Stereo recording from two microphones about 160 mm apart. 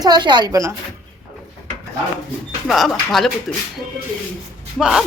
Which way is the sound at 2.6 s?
Centre (ahead or behind).